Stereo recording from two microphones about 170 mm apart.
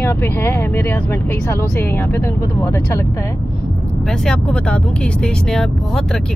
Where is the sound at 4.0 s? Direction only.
5° left (ahead or behind).